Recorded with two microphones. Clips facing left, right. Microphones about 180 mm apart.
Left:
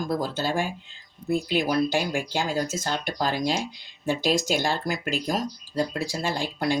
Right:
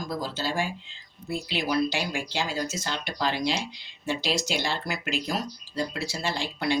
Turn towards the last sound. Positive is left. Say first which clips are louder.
# left 2 dB
turn(degrees=45)  # may be behind; listen again after turning